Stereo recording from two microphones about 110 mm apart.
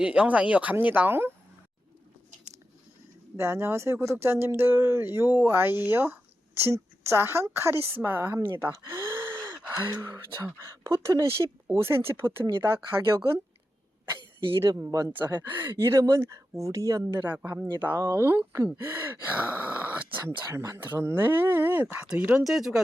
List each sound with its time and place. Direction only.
0.0 s speech: 10° right (ahead or behind)
3.3 s speech: 25° right (ahead or behind)
14.6 s speech: 25° right (ahead or behind)
15.1 s speech: 15° right (ahead or behind)
17.2 s speech: 15° right (ahead or behind)
17.9 s speech: 30° right (ahead or behind)
18.8 s gasp: 25° right (ahead or behind)
20.2 s speech: 25° right (ahead or behind)
22.3 s speech: 5° right (ahead or behind)